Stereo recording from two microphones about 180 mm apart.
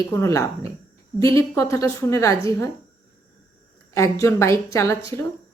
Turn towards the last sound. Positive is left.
turn(degrees=15)  # may be behind; listen again after turning